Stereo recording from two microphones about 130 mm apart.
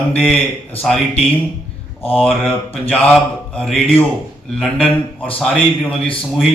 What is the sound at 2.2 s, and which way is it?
A man's voice, 5° left (ahead or behind).